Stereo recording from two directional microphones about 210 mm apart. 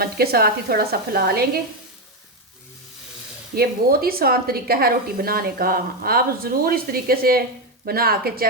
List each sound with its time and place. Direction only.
0.0 s a woman's voice: 45° right (ahead or behind)
3.5 s a woman's voice: 45° right (ahead or behind)